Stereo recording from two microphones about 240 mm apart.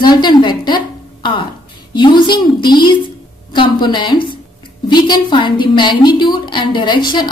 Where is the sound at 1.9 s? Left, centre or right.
Centre.